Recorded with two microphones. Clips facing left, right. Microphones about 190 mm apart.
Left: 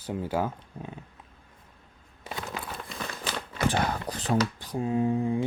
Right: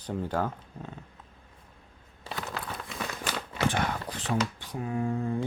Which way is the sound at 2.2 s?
20° left (ahead or behind).